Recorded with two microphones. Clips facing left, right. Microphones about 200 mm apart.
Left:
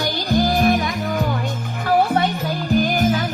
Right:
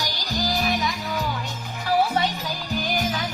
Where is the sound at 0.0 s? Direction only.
55° left (ahead or behind).